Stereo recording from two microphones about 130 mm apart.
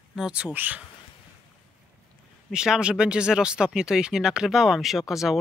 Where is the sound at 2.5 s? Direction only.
5° right (ahead or behind).